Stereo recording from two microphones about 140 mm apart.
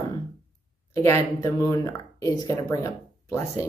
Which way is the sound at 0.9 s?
20° left (ahead or behind).